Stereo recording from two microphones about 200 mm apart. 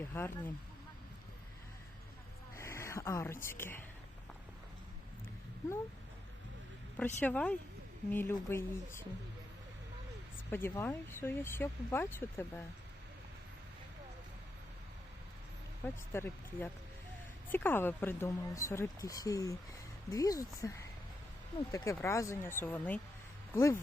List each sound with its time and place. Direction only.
0.1 s speech: 10° left (ahead or behind)
2.6 s speech: 15° left (ahead or behind)
6.9 s speech: 10° left (ahead or behind)
10.5 s speech: 10° left (ahead or behind)
16.1 s speech: 10° left (ahead or behind)
21.7 s speech: 15° left (ahead or behind)